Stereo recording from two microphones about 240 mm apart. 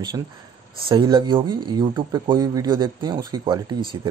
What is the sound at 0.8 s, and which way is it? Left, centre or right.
Speech, centre.